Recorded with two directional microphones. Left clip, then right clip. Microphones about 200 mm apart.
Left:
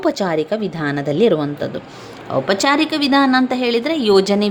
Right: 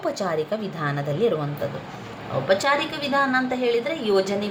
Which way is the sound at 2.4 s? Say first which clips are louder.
Left 4 dB; 60° left (ahead or behind).